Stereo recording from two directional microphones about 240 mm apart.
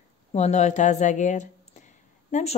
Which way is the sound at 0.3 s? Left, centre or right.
Left.